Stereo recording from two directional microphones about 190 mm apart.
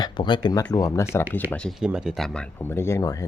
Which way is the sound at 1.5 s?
5° left (ahead or behind).